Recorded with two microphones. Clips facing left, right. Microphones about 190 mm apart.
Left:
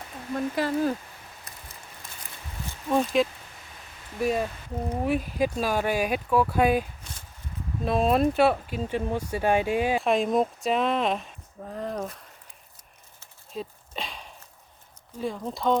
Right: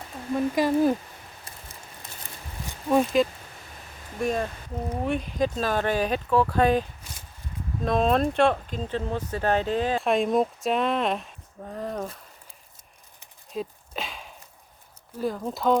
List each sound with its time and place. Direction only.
0.3 s speech: 15° right (ahead or behind)
1.5 s a sound: 25° right (ahead or behind)
2.9 s speech: 5° right (ahead or behind)
7.9 s speech: 5° left (ahead or behind)
10.0 s speech: centre (ahead or behind)
13.5 s a sound: centre (ahead or behind)
15.2 s speech: centre (ahead or behind)